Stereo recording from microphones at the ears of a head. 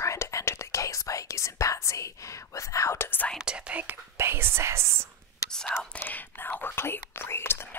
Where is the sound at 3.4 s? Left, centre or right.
Right.